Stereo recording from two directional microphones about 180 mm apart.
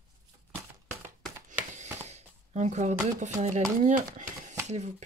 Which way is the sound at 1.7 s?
40° right (ahead or behind).